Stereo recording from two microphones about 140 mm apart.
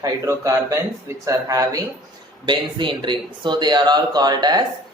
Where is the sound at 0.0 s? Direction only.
25° right (ahead or behind).